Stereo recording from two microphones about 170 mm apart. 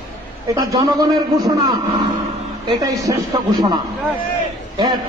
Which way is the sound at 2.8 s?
20° right (ahead or behind).